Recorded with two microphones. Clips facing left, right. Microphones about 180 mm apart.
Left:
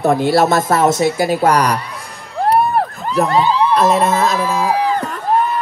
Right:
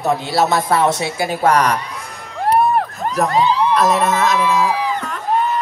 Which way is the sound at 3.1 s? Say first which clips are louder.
Left 2 dB; 30° left (ahead or behind).